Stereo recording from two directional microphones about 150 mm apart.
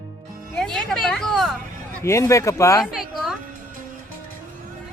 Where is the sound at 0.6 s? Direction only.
5° left (ahead or behind).